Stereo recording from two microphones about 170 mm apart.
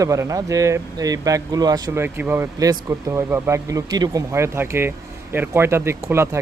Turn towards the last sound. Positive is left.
turn(degrees=-15)  # may be behind; listen again after turning